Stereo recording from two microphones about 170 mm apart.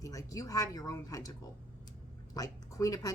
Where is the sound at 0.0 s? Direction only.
20° left (ahead or behind).